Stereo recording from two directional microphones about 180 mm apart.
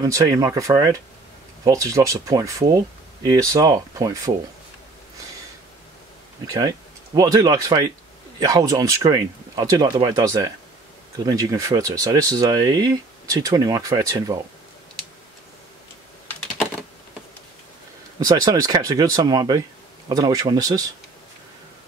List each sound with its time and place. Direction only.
0.0 s speech: 20° right (ahead or behind)
6.4 s speech: 20° right (ahead or behind)
18.2 s speech: 20° right (ahead or behind)